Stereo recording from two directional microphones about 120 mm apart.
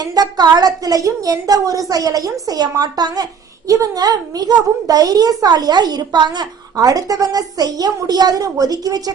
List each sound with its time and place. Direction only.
0.0 s a child's voice: 35° right (ahead or behind)